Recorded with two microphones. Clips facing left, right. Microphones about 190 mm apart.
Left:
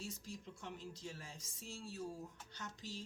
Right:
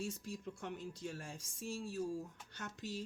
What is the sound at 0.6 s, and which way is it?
Speech, 60° right (ahead or behind).